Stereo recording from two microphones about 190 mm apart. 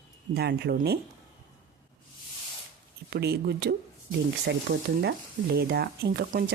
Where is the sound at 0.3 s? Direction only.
60° right (ahead or behind).